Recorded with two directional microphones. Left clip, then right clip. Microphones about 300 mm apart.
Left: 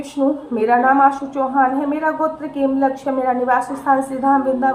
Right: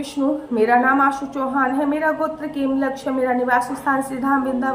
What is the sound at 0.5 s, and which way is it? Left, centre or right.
A woman's voice, centre.